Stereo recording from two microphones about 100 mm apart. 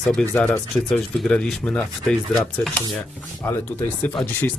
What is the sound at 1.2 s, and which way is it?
Speech, 5° left (ahead or behind).